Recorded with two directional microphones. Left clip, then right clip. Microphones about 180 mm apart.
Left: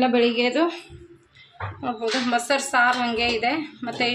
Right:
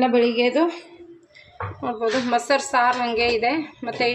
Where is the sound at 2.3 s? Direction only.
10° right (ahead or behind).